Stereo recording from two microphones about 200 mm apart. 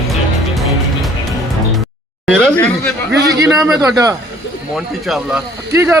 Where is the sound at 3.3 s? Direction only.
15° right (ahead or behind).